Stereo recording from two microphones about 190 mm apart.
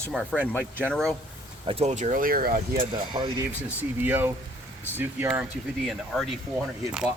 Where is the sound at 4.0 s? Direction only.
10° right (ahead or behind).